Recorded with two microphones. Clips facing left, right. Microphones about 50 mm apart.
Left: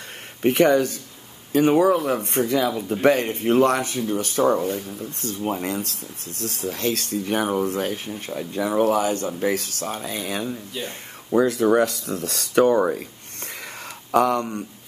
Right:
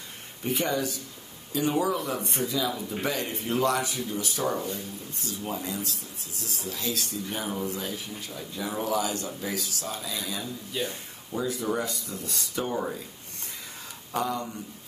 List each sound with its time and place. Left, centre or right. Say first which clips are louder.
0.4 s speech: left 11 dB; left
14.1 s speech: left 10 dB; left